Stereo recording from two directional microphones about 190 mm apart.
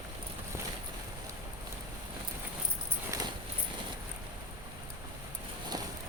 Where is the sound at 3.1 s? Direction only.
15° right (ahead or behind).